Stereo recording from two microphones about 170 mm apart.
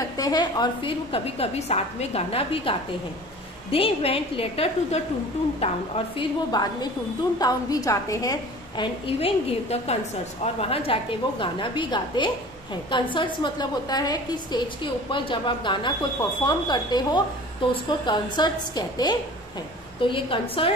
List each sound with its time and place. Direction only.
0.2 s a woman's voice: 25° left (ahead or behind)